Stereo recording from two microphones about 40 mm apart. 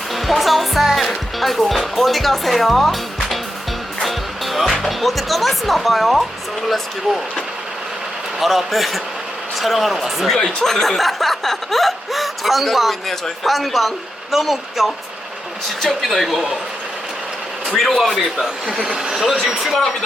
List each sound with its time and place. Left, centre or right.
0.1 s music: centre
0.9 s speech: centre
10.6 s speech: centre
17.7 s speech: centre